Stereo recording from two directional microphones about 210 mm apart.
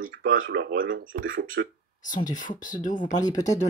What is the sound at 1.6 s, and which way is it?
Speech, 55° right (ahead or behind).